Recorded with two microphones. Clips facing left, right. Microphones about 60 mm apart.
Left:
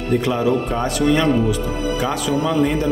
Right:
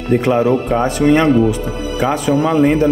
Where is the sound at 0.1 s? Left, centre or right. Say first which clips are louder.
Right 5 dB; right.